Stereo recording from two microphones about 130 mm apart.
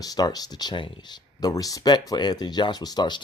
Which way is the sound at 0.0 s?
30° left (ahead or behind).